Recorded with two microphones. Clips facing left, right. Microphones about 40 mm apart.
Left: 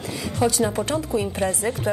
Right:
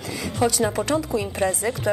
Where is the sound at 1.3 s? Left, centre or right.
Right.